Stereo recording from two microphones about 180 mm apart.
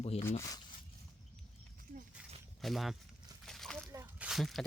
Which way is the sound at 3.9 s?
10° right (ahead or behind).